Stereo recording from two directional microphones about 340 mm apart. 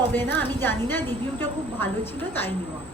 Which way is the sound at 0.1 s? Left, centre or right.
Centre.